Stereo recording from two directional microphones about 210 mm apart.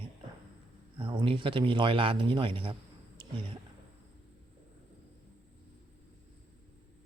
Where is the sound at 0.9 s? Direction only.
25° right (ahead or behind).